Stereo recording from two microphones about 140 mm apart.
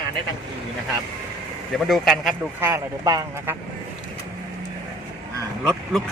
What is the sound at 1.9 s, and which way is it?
Speech, centre (ahead or behind).